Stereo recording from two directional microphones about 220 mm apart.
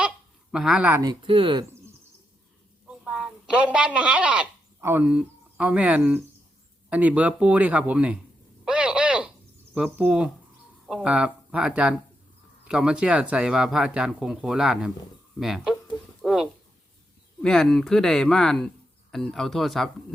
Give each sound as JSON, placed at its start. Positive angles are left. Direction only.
{"t": 0.5, "sound": "speech", "side_deg": -5}
{"t": 1.2, "sound": "speech", "side_deg": -25}
{"t": 2.8, "sound": "speech", "side_deg": -5}
{"t": 8.6, "sound": "a sound", "side_deg": -5}
{"t": 9.7, "sound": "speech", "side_deg": -5}
{"t": 16.2, "sound": "a sound", "side_deg": 0}
{"t": 17.4, "sound": "speech", "side_deg": 0}